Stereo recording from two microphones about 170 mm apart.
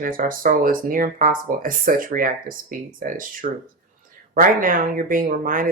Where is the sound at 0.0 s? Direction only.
55° right (ahead or behind).